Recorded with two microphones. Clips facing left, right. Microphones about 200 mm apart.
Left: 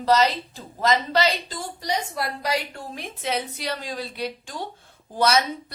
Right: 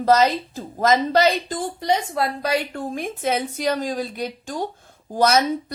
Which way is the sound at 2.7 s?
50° right (ahead or behind).